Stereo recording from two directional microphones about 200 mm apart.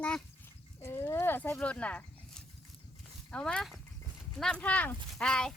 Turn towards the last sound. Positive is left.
turn(degrees=5)  # may be behind; listen again after turning